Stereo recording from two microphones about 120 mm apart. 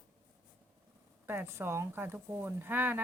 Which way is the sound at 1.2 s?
20° right (ahead or behind).